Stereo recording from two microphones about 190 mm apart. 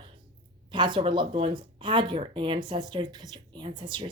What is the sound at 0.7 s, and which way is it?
Speech, 25° right (ahead or behind).